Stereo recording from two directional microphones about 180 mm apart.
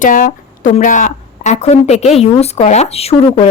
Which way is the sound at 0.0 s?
45° left (ahead or behind).